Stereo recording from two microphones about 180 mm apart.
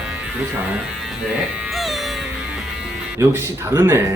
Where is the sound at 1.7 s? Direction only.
Centre (ahead or behind).